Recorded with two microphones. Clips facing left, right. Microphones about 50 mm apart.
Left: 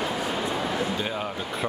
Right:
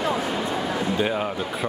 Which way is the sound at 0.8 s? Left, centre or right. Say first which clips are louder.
Right 4 dB; centre.